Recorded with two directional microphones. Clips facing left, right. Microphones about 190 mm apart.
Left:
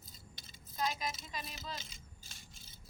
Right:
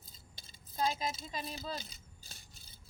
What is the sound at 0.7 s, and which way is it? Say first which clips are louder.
Speech: right 3 dB; 30° right (ahead or behind).